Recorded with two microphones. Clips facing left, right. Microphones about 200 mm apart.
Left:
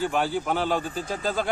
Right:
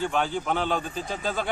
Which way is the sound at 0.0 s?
10° left (ahead or behind).